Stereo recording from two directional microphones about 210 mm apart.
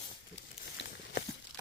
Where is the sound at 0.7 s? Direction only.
55° left (ahead or behind).